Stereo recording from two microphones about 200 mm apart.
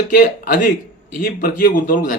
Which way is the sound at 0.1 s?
45° left (ahead or behind).